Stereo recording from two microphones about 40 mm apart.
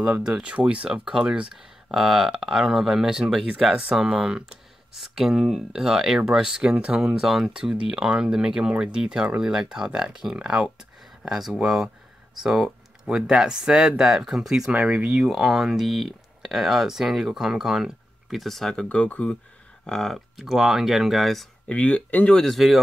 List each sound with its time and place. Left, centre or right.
0.2 s speech: right
7.4 s speech: centre
11.2 s speech: centre
14.8 s speech: right
15.1 s speech: centre
18.4 s speech: centre
18.8 s speech: left
19.9 s speech: centre
20.2 s speech: centre
21.6 s speech: left
22.4 s speech: centre